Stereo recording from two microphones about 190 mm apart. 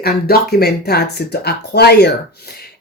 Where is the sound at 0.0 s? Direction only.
55° left (ahead or behind).